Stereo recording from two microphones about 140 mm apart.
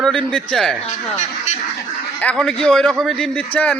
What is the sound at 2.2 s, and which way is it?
A man's voice, 5° left (ahead or behind).